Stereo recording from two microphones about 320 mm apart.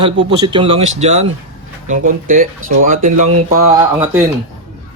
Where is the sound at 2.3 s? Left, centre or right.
Right.